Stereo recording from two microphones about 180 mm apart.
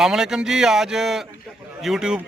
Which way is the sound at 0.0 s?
5° right (ahead or behind).